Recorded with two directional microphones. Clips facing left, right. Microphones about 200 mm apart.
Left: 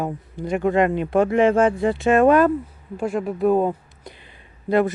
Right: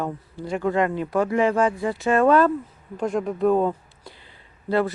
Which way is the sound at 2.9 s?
5° left (ahead or behind).